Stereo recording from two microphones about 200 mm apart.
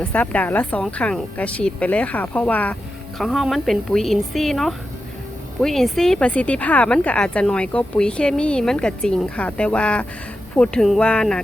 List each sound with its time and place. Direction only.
0.0 s a woman's voice: 5° left (ahead or behind)